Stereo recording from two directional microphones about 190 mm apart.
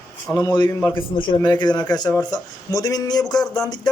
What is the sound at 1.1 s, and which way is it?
Speech, 25° left (ahead or behind).